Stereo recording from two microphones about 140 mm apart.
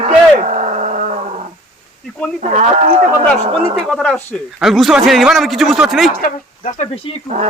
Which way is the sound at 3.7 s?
Centre (ahead or behind).